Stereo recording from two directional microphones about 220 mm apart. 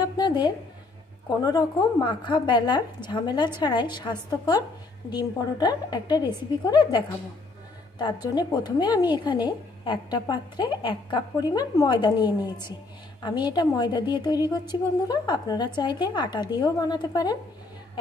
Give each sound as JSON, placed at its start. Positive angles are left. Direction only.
{"t": 0.0, "sound": "a sound", "side_deg": 20}
{"t": 1.4, "sound": "a woman's voice", "side_deg": 15}
{"t": 8.0, "sound": "a woman's voice", "side_deg": 20}